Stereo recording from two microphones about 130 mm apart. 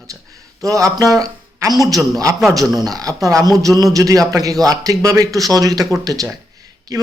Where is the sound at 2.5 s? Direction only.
30° right (ahead or behind).